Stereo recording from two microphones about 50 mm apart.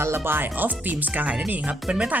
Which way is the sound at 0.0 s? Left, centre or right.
Right.